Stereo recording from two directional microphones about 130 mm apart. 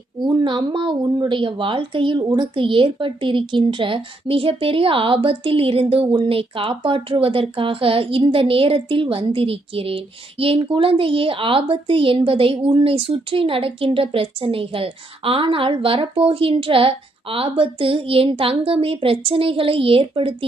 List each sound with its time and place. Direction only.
0.2 s a woman's voice: 35° right (ahead or behind)